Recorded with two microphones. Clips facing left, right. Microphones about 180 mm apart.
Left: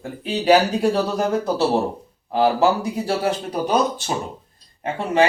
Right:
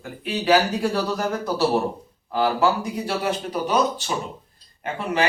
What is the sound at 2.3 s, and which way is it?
Speech, 25° left (ahead or behind).